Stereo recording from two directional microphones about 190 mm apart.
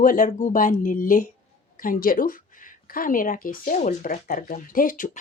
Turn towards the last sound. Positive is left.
turn(degrees=45)  # may be behind; listen again after turning